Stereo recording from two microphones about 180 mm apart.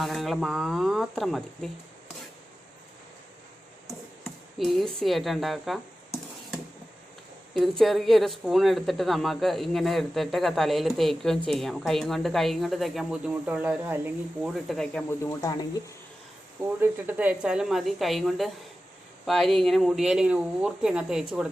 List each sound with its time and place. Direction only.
0.0 s a woman's voice: centre (ahead or behind)
3.8 s speech: centre (ahead or behind)
7.5 s a woman's voice: centre (ahead or behind)
14.5 s a woman's voice: centre (ahead or behind)
15.2 s speech: 20° left (ahead or behind)
16.6 s a woman's voice: 10° right (ahead or behind)